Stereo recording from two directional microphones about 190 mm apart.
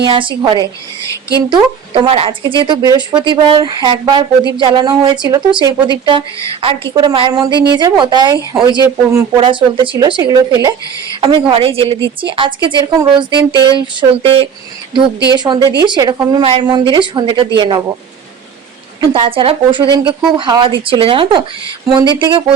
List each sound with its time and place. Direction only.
0.0 s a woman's voice: 25° right (ahead or behind)
18.9 s a woman's voice: 25° right (ahead or behind)